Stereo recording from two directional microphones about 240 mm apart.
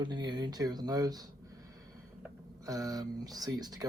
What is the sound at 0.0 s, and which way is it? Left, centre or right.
Speech, centre.